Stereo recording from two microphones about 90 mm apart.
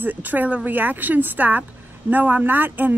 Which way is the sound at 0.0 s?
20° right (ahead or behind).